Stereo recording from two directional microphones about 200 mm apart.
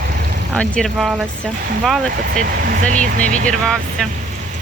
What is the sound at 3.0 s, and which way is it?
Speech, 40° right (ahead or behind).